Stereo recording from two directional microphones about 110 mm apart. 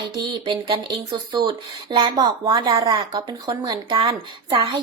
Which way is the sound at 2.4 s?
35° right (ahead or behind).